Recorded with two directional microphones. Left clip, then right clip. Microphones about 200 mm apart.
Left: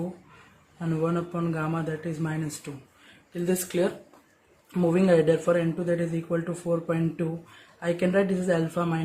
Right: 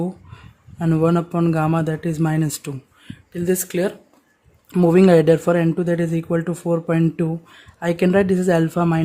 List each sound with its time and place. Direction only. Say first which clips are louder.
0.8 s speech: right 9 dB; 55° right (ahead or behind)
3.3 s speech: right 5 dB; 45° right (ahead or behind)